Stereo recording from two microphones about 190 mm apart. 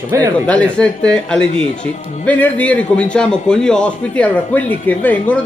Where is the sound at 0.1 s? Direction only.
15° right (ahead or behind).